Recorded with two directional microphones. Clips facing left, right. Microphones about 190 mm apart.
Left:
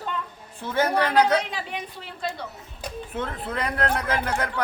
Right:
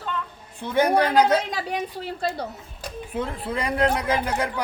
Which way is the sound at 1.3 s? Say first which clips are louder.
Right 2 dB; 40° right (ahead or behind).